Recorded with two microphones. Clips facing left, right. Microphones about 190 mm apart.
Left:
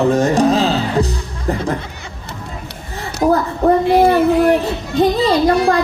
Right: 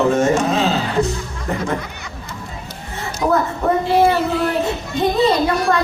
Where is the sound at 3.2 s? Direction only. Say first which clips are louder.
Left 4 dB; 45° left (ahead or behind).